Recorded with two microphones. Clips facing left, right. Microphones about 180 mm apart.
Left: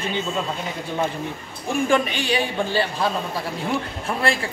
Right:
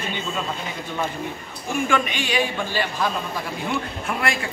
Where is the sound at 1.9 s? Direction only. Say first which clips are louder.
Left 3 dB; 35° left (ahead or behind).